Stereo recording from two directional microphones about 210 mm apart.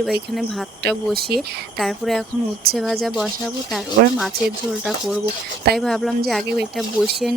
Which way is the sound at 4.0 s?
50° right (ahead or behind).